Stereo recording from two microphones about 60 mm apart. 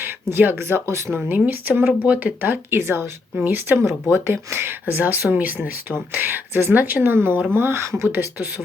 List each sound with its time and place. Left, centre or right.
0.0 s speech: right
3.3 s speech: right
8.0 s speech: right